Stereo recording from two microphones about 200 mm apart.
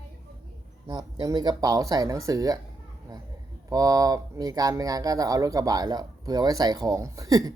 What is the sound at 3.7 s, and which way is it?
A woman's voice, 15° right (ahead or behind).